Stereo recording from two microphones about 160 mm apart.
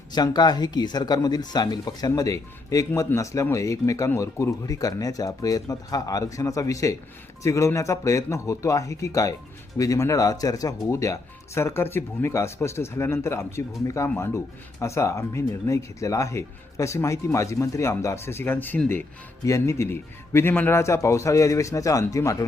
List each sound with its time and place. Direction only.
0.1 s speech: 25° left (ahead or behind)